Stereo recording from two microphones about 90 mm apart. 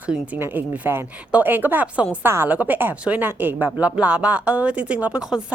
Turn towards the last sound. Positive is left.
turn(degrees=-10)  # may be behind; listen again after turning